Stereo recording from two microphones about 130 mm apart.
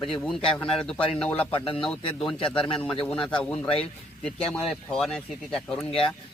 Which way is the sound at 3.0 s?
10° left (ahead or behind).